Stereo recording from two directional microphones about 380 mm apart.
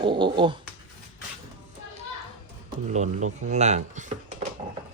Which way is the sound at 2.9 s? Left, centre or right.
Centre.